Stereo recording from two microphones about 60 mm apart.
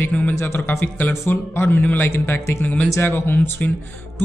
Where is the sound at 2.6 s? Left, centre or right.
Left.